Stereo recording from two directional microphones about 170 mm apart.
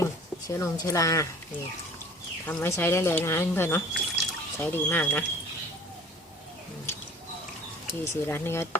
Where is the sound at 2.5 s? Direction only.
15° left (ahead or behind).